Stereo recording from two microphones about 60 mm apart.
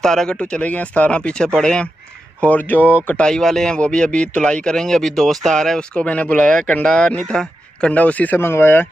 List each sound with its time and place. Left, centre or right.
0.0 s speech: centre
2.4 s speech: left
3.2 s speech: centre
8.4 s speech: left